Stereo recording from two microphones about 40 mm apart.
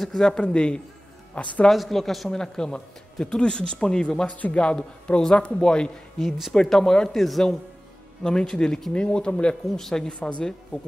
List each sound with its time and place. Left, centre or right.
0.0 s speech: centre
0.3 s speech: left
1.7 s speech: centre
2.3 s speech: centre
4.3 s speech: left
4.6 s speech: left
7.1 s speech: centre
8.2 s speech: centre
9.8 s speech: centre
10.0 s speech: left